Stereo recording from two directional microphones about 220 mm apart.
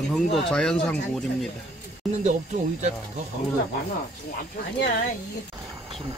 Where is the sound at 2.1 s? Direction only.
30° right (ahead or behind).